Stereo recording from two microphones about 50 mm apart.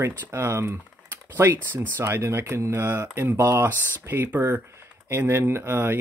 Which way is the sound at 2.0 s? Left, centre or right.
Right.